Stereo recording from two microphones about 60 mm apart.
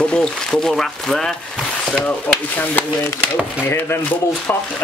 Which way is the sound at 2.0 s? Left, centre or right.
Left.